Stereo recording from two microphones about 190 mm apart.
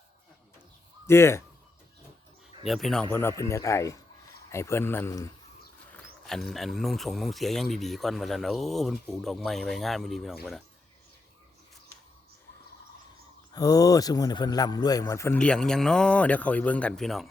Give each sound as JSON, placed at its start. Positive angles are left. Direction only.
{"t": 1.0, "sound": "a man's voice", "side_deg": 15}
{"t": 2.6, "sound": "a man's voice", "side_deg": 0}
{"t": 6.2, "sound": "speech", "side_deg": 0}
{"t": 13.5, "sound": "a man's voice", "side_deg": 20}